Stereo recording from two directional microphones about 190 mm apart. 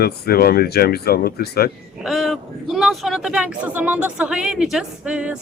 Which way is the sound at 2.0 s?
Centre (ahead or behind).